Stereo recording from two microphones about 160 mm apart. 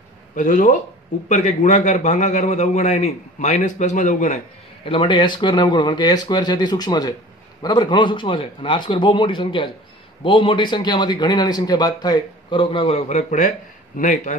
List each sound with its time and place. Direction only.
0.4 s a man's voice: 55° left (ahead or behind)
4.8 s a man's voice: 30° left (ahead or behind); by 14.3 s 50° left (ahead or behind)